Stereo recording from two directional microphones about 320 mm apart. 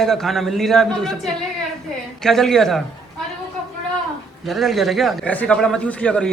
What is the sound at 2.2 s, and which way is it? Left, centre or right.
Speech, centre.